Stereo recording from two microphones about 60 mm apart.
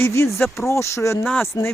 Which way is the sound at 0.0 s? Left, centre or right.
Left.